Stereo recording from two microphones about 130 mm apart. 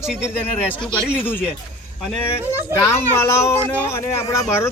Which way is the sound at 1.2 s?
15° left (ahead or behind).